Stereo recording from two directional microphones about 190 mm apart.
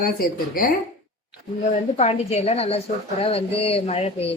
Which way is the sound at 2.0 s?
35° left (ahead or behind).